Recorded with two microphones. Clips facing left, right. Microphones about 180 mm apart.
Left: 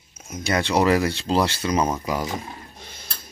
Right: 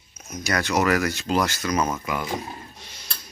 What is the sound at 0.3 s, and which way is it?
Speech, 25° left (ahead or behind).